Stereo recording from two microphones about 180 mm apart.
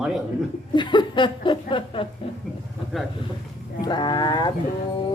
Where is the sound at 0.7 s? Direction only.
25° left (ahead or behind).